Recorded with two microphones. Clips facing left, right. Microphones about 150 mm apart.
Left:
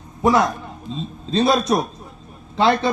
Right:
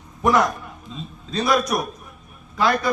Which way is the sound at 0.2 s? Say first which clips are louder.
Left 2 dB; 20° left (ahead or behind).